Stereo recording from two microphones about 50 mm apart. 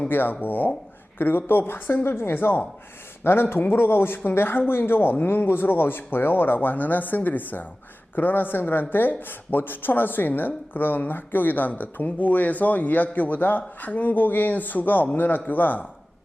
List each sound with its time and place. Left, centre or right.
0.1 s speech: left